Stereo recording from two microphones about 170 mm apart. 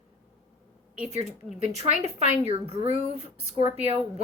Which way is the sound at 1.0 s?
40° right (ahead or behind).